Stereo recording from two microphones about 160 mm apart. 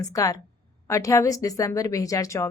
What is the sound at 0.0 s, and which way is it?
A woman's voice, 20° left (ahead or behind).